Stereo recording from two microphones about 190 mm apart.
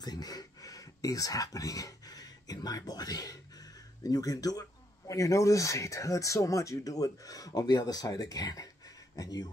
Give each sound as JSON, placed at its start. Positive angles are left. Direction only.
{"t": 0.0, "sound": "speech", "side_deg": 20}